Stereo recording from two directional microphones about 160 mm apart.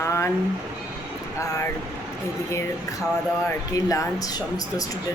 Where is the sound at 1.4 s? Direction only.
20° left (ahead or behind).